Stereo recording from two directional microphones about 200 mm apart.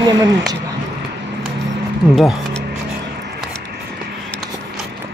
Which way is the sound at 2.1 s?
Centre (ahead or behind).